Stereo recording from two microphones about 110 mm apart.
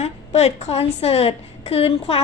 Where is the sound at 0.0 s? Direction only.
75° left (ahead or behind).